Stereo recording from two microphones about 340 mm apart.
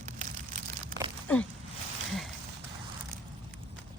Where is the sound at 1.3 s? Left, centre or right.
Centre.